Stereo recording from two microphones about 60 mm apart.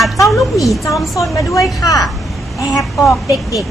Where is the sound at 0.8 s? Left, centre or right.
Left.